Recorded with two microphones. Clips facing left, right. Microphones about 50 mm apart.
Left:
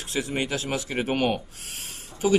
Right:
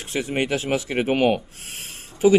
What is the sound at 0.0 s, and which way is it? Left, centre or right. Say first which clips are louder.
Speech: right 3 dB; right.